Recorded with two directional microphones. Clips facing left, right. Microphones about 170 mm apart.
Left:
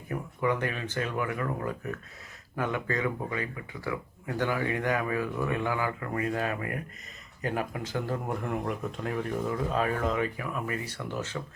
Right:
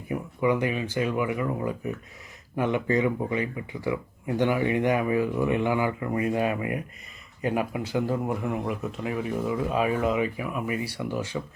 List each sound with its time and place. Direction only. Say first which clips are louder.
0.1 s speech: right 4 dB; 10° right (ahead or behind)